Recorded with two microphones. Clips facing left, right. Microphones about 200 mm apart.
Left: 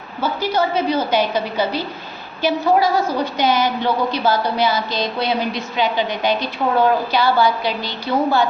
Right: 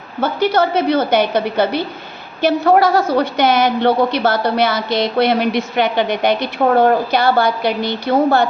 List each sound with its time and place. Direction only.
0.2 s a woman's voice: 70° right (ahead or behind)